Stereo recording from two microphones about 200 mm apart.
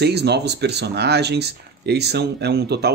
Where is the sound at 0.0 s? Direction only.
55° right (ahead or behind).